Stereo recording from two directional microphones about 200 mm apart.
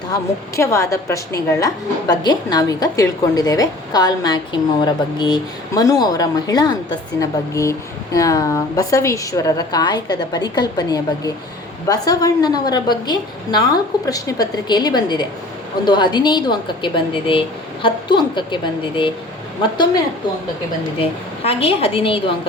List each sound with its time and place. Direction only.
0.1 s a woman's voice: 15° left (ahead or behind)
21.0 s a woman's voice: 30° left (ahead or behind)